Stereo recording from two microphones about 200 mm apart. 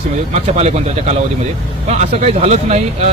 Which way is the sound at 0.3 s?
30° right (ahead or behind).